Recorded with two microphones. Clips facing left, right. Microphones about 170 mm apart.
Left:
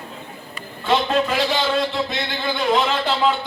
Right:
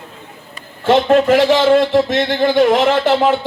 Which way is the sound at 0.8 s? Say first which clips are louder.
Right 8 dB; 70° right (ahead or behind).